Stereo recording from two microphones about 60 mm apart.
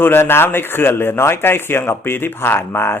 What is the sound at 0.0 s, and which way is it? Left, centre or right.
Speech, left.